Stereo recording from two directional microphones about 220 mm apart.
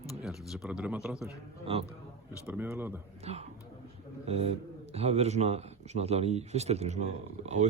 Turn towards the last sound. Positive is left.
turn(degrees=-30)  # may be behind; listen again after turning